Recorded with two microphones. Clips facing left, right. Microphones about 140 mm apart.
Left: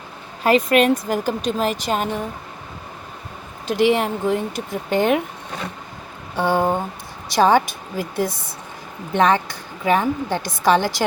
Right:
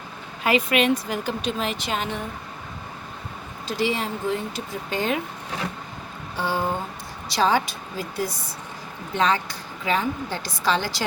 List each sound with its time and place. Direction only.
0.4 s speech: 40° left (ahead or behind)
3.7 s speech: 60° left (ahead or behind)
6.3 s speech: 55° left (ahead or behind)